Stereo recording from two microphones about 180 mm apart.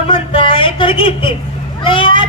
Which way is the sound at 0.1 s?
30° left (ahead or behind).